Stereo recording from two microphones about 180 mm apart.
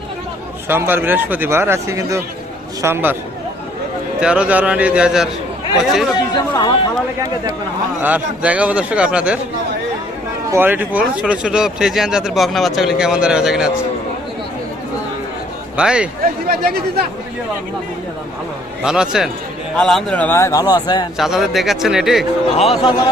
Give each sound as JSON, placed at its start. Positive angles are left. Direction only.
{"t": 0.7, "sound": "speech", "side_deg": -10}
{"t": 4.2, "sound": "a man's voice", "side_deg": -5}
{"t": 6.5, "sound": "speech", "side_deg": 20}
{"t": 8.0, "sound": "speech", "side_deg": -10}
{"t": 10.5, "sound": "a man's voice", "side_deg": -10}
{"t": 15.7, "sound": "a man's voice", "side_deg": -5}
{"t": 16.2, "sound": "speech", "side_deg": -60}
{"t": 18.9, "sound": "a man's voice", "side_deg": -5}
{"t": 21.2, "sound": "a man's voice", "side_deg": 0}
{"t": 22.7, "sound": "speech", "side_deg": 25}